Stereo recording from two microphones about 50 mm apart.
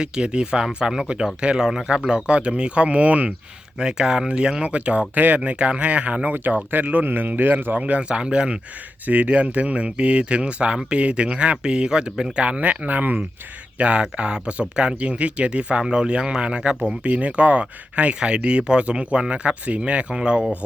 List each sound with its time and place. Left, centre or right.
0.0 s speech: centre
3.8 s a man's voice: centre
9.0 s speech: right
13.7 s speech: right
17.0 s speech: right